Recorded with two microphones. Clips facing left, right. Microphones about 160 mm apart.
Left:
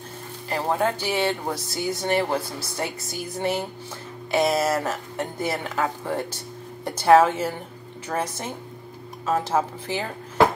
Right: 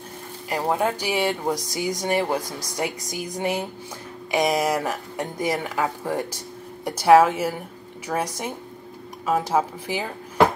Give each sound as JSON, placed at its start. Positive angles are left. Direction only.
{"t": 0.5, "sound": "speech", "side_deg": -5}